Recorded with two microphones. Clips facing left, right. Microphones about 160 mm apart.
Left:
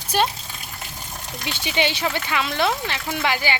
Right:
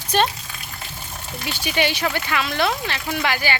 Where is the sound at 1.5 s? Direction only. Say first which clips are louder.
Right 1 dB; 20° left (ahead or behind).